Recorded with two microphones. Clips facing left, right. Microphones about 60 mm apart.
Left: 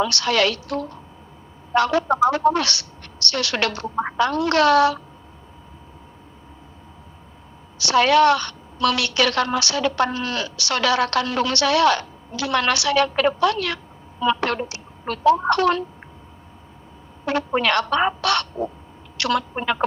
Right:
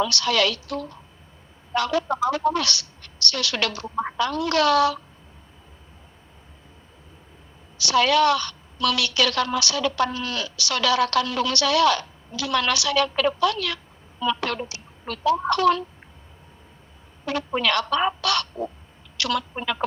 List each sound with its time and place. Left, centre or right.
0.0 s a woman's voice: left
7.8 s a woman's voice: left
17.2 s a woman's voice: left